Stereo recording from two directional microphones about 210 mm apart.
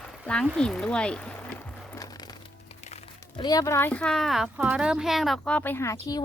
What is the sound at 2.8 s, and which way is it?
A woman's voice, 30° left (ahead or behind).